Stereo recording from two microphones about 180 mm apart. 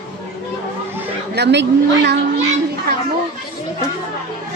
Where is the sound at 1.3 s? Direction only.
70° right (ahead or behind).